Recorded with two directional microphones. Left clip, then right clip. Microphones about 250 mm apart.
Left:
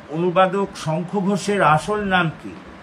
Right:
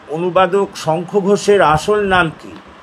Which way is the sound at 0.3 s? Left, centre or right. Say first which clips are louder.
Right 4 dB; right.